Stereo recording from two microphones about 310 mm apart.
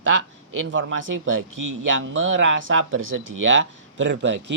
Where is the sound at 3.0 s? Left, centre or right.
Right.